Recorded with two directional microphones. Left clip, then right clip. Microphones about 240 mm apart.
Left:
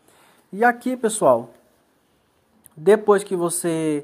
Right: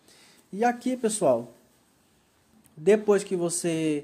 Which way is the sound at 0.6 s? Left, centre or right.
Centre.